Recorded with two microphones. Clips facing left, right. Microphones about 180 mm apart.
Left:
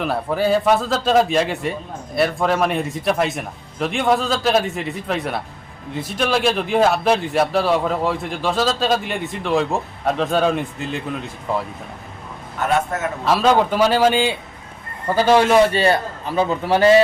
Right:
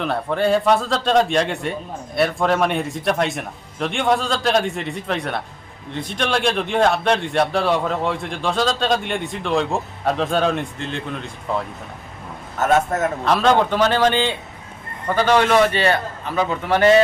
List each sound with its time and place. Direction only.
0.0 s a man's voice: 5° left (ahead or behind)
12.6 s a man's voice: 40° right (ahead or behind)
13.2 s a man's voice: 5° left (ahead or behind)